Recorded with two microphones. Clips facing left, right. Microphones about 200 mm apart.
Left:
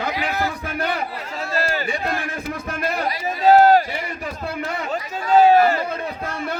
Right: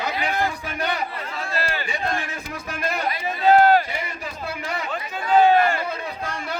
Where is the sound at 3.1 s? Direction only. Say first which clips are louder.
Left 3 dB; 40° left (ahead or behind).